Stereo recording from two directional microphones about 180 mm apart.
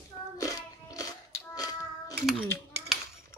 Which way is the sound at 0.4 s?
20° left (ahead or behind).